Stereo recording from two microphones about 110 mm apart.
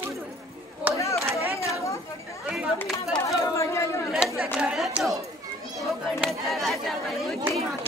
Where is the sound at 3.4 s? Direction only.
25° left (ahead or behind).